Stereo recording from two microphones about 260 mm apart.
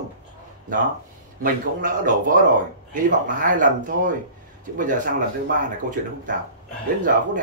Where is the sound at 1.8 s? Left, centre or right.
Right.